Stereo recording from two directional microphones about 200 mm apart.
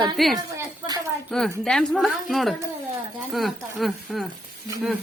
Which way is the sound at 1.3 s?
5° left (ahead or behind).